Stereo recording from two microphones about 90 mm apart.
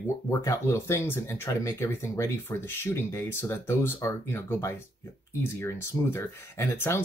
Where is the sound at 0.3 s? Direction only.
35° left (ahead or behind).